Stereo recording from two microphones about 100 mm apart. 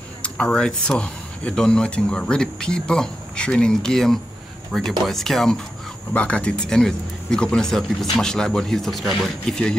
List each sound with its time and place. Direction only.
0.2 s speech: 10° left (ahead or behind)